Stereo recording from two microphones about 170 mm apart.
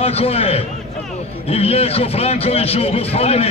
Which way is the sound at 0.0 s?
35° left (ahead or behind).